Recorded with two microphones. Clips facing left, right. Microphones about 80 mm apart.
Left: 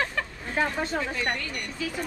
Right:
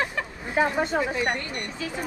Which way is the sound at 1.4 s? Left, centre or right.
Right.